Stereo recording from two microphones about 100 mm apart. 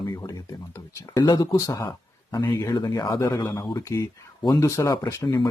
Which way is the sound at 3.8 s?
30° left (ahead or behind).